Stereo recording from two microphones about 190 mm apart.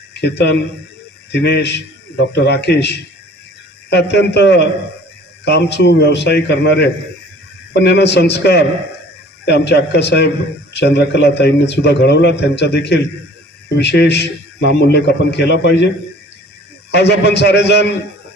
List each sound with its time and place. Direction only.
0.1 s a man's voice: 65° left (ahead or behind)
16.9 s a man's voice: 60° left (ahead or behind)